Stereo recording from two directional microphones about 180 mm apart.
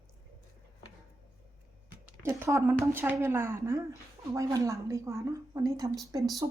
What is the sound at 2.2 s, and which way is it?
A woman's voice, 15° right (ahead or behind).